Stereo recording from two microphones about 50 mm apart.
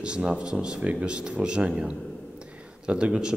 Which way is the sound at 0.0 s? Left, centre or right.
Centre.